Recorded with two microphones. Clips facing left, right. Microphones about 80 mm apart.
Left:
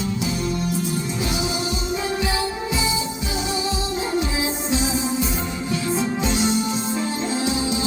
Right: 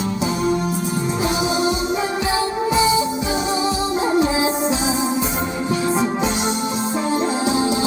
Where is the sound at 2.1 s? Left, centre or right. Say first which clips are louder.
Right 4 dB; right.